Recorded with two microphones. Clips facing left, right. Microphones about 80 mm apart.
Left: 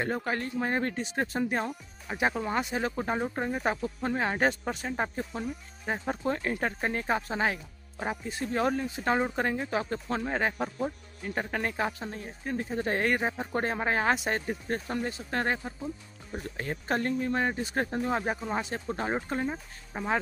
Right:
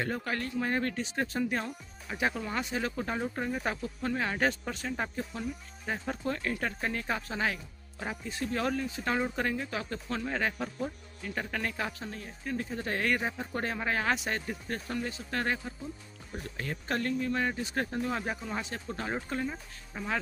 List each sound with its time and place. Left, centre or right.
0.0 s speech: left